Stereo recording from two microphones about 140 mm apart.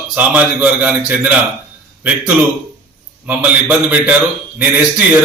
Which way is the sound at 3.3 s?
10° right (ahead or behind).